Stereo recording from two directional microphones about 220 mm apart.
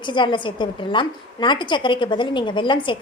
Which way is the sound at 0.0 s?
20° left (ahead or behind).